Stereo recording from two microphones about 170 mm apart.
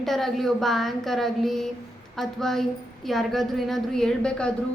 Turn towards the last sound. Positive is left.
turn(degrees=5)  # may be behind; listen again after turning